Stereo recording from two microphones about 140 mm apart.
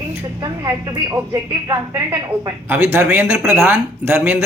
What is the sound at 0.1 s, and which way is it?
A woman's voice, 25° right (ahead or behind).